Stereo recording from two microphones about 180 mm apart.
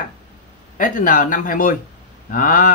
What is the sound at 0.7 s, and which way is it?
Speech, 45° left (ahead or behind).